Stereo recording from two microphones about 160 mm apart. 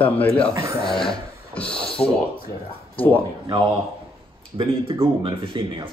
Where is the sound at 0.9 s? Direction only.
5° left (ahead or behind).